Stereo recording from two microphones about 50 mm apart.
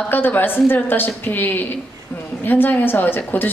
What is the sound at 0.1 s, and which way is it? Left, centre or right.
A woman's voice, left.